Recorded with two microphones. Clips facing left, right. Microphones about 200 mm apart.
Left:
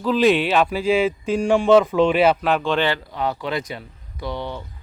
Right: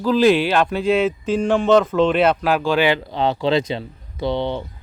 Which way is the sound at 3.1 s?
25° right (ahead or behind).